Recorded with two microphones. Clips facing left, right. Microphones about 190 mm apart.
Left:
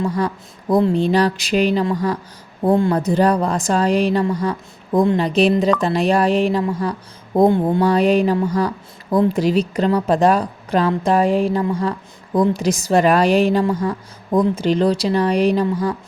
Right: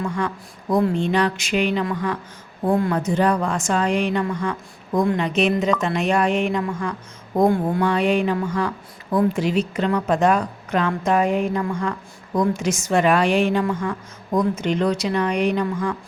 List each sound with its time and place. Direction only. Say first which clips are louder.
0.0 s a woman's voice: left 4 dB; 35° left (ahead or behind)
7.8 s a woman's voice: left 4 dB; 40° left (ahead or behind)